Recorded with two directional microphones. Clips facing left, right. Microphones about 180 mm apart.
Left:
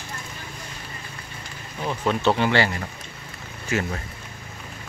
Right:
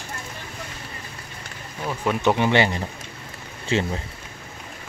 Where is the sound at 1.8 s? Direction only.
10° right (ahead or behind); by 3.9 s 25° right (ahead or behind).